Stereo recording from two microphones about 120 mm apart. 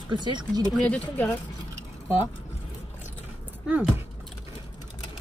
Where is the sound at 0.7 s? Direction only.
10° left (ahead or behind).